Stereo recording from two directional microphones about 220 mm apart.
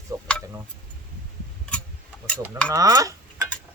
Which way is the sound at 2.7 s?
15° right (ahead or behind).